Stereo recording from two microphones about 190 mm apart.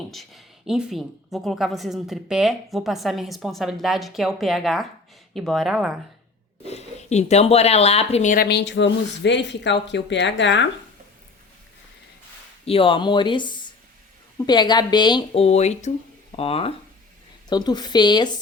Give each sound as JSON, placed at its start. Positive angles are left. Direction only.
{"t": 0.1, "sound": "a woman's voice", "side_deg": 0}
{"t": 6.7, "sound": "speech", "side_deg": 35}
{"t": 8.4, "sound": "speech", "side_deg": 65}
{"t": 12.6, "sound": "speech", "side_deg": 30}